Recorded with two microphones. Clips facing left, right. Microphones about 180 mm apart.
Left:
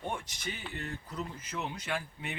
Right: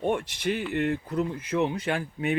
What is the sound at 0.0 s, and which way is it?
Speech, 70° right (ahead or behind).